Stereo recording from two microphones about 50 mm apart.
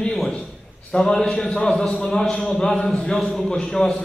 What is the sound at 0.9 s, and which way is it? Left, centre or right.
A man's voice, centre.